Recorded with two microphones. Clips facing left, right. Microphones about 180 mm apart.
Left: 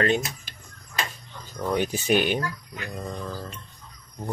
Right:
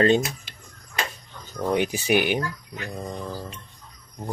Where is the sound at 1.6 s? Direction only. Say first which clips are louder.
Right 2 dB; 15° right (ahead or behind).